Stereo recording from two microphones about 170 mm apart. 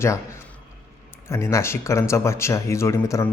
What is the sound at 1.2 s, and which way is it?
Speech, 15° left (ahead or behind).